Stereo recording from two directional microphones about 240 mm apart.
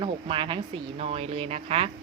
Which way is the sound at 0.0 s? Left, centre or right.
Right.